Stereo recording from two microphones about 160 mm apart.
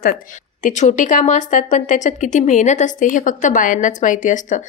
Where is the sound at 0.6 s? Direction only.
50° left (ahead or behind).